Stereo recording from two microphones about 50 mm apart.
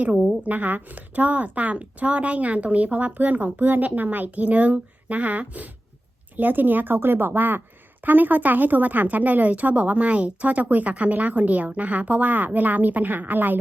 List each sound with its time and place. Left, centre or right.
0.0 s a woman's voice: right